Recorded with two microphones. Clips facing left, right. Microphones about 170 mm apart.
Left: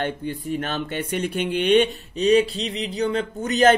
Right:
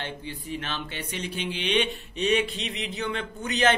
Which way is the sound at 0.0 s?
50° left (ahead or behind).